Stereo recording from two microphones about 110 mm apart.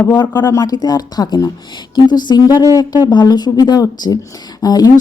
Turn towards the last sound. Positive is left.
turn(degrees=35)  # may be behind; listen again after turning